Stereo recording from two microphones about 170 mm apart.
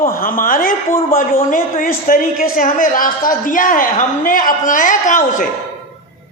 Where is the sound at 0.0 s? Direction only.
55° left (ahead or behind).